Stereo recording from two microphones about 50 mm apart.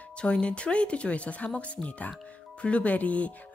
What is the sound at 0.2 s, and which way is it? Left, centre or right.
Speech, left.